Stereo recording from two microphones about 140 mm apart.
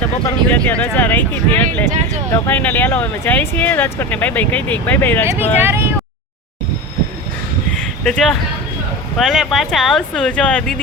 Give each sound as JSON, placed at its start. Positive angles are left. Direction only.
{"t": 0.3, "sound": "speech", "side_deg": 10}
{"t": 5.6, "sound": "speech", "side_deg": -15}
{"t": 8.0, "sound": "speech", "side_deg": 5}